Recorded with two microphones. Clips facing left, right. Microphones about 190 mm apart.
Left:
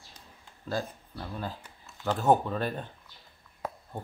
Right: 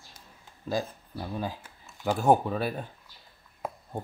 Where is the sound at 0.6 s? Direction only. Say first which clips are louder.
Right 2 dB; 15° right (ahead or behind).